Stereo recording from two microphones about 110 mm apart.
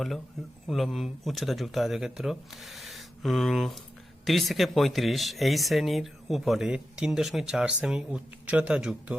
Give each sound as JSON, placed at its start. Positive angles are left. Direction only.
{"t": 0.7, "sound": "speech", "side_deg": 0}